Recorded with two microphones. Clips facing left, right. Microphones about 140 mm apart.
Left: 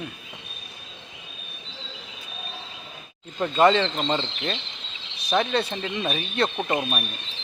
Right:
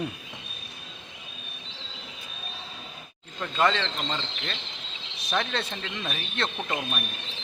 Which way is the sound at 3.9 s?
35° left (ahead or behind).